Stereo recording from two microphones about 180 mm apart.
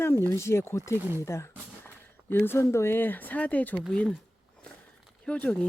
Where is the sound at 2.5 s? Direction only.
15° left (ahead or behind).